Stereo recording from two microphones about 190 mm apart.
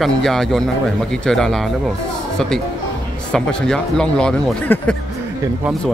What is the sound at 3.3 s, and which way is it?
Speech, 5° left (ahead or behind).